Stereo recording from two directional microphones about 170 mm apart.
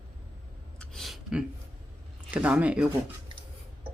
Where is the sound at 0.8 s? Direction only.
Centre (ahead or behind).